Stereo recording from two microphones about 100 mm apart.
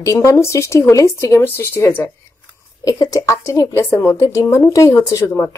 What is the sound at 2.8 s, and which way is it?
A woman's voice, 35° left (ahead or behind).